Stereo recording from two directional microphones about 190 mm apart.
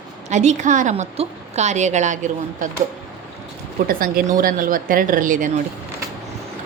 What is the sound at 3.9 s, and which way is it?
Speech, 50° right (ahead or behind).